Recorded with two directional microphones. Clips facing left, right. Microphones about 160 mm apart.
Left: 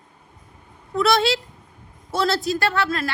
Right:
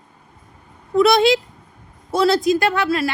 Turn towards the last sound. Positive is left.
turn(degrees=-10)  # may be behind; listen again after turning